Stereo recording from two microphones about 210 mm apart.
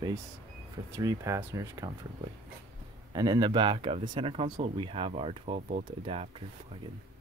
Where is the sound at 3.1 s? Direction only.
20° right (ahead or behind).